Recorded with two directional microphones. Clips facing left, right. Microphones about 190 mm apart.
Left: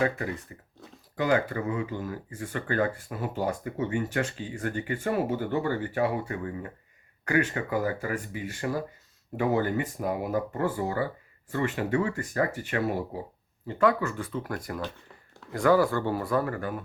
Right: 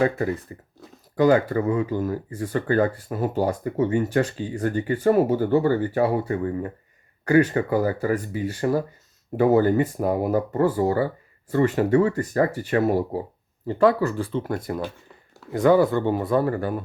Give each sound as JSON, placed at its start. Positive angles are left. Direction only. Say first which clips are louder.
{"t": 0.5, "sound": "speech", "louder": "right 5 dB", "side_deg": -35}